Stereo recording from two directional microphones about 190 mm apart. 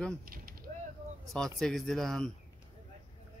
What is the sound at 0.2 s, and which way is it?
Speech, 50° right (ahead or behind).